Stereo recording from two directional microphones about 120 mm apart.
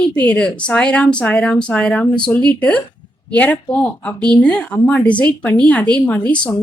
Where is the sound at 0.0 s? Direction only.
10° left (ahead or behind).